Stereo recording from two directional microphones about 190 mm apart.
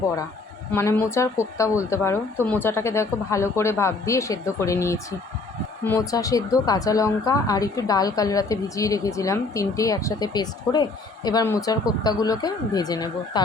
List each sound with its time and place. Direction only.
0.7 s a woman's voice: 15° left (ahead or behind)